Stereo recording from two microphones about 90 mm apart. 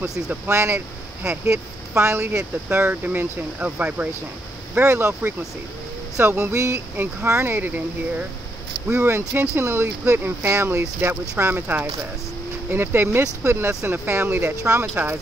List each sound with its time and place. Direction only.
0.5 s speech: 30° right (ahead or behind)
4.7 s speech: 30° right (ahead or behind)